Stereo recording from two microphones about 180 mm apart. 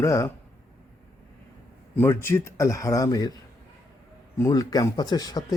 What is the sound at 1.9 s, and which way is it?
Speech, 15° left (ahead or behind).